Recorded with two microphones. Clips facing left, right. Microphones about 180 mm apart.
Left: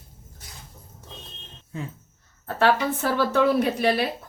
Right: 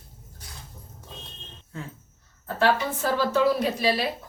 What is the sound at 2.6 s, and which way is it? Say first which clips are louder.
A woman's voice: left 2 dB; 60° left (ahead or behind).